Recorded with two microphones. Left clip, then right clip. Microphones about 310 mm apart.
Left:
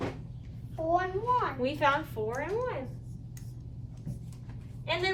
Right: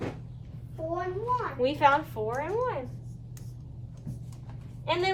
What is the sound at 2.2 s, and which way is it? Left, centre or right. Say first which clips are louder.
Speech: right 3 dB; centre.